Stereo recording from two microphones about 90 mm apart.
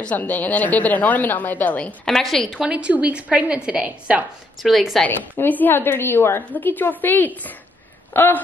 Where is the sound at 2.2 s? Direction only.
5° left (ahead or behind); by 4.2 s 15° right (ahead or behind).